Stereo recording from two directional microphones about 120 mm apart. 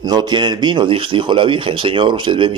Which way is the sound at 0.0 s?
35° right (ahead or behind).